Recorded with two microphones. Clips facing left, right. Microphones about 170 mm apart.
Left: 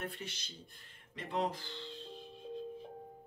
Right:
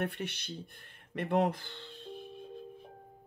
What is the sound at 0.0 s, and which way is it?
Speech, 65° right (ahead or behind).